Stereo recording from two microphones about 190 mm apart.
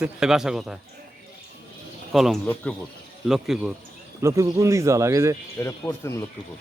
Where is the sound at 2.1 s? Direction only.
Centre (ahead or behind).